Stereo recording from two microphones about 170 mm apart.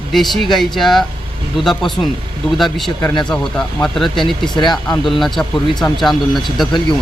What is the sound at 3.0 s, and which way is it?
Speech, 25° left (ahead or behind).